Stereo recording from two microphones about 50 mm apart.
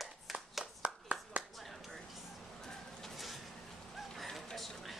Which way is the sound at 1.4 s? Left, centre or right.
Right.